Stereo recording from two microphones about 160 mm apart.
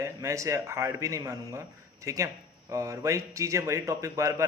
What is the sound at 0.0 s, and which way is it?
Speech, 20° right (ahead or behind).